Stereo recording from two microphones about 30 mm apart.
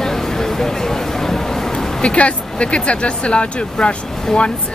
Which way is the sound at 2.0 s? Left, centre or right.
Left.